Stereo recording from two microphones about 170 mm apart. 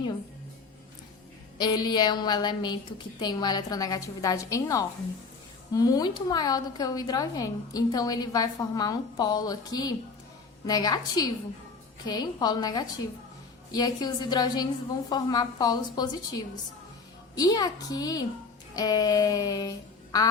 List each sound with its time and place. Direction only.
1.5 s a woman's voice: 25° left (ahead or behind)